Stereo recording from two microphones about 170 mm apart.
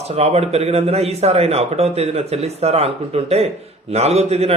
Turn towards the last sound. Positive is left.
turn(degrees=-40)  # may be behind; listen again after turning